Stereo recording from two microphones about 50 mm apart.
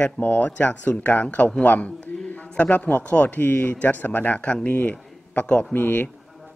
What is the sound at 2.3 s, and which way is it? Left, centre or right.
A man's voice, left.